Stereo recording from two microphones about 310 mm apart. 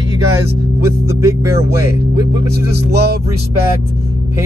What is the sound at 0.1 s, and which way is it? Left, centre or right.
Speech, centre.